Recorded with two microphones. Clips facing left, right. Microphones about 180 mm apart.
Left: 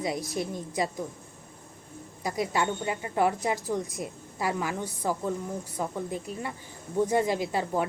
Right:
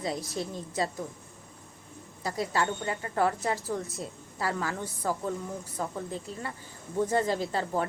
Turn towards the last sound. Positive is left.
turn(degrees=15)  # may be behind; listen again after turning